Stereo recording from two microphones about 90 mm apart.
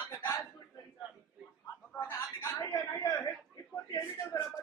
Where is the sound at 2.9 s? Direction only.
40° left (ahead or behind).